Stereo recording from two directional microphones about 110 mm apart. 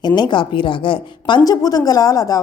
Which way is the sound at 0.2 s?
45° left (ahead or behind).